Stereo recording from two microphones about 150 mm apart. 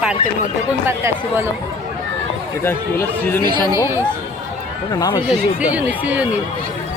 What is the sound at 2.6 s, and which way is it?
Speech, 15° left (ahead or behind).